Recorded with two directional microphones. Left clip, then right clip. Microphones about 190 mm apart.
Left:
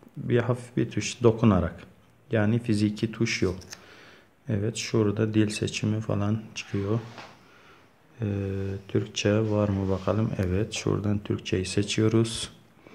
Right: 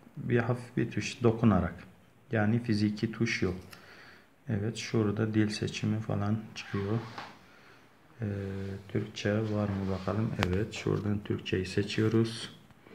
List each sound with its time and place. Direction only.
0.3 s speech: 30° left (ahead or behind)
8.2 s speech: 35° left (ahead or behind)